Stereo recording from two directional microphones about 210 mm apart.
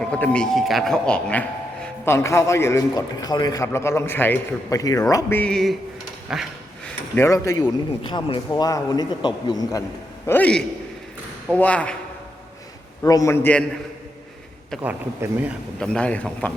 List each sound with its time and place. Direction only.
0.0 s a man's voice: 5° left (ahead or behind)
6.2 s a sound: centre (ahead or behind)
7.2 s a man's voice: 15° left (ahead or behind)
10.2 s a man's voice: 5° left (ahead or behind)
13.0 s a man's voice: 15° left (ahead or behind)
14.7 s speech: 10° right (ahead or behind)
15.8 s speech: 5° left (ahead or behind)